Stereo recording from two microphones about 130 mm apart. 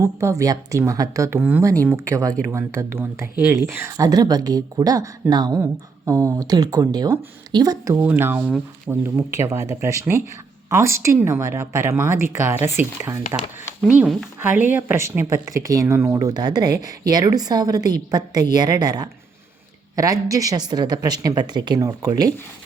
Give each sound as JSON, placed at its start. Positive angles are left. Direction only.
{"t": 0.0, "sound": "speech", "side_deg": -20}
{"t": 1.4, "sound": "speech", "side_deg": -10}
{"t": 7.9, "sound": "speech", "side_deg": -15}